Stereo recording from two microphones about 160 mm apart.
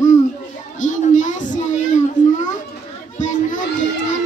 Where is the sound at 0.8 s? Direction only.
50° left (ahead or behind).